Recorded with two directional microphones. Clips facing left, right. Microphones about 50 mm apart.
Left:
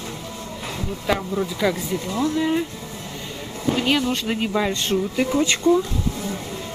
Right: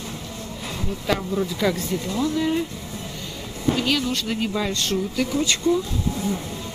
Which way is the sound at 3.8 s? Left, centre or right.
Left.